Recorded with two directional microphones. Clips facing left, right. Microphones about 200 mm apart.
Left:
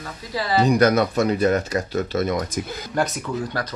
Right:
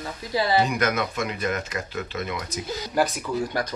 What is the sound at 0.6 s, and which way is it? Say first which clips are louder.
Speech: left 8 dB; 35° left (ahead or behind).